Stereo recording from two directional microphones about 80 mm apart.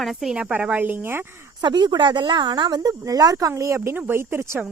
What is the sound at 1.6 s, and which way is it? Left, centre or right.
Speech, right.